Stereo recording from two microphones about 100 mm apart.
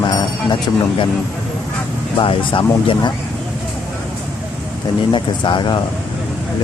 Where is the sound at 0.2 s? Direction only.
50° left (ahead or behind).